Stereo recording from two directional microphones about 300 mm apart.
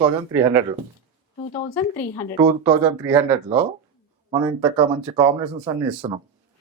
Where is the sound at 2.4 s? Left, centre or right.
Centre.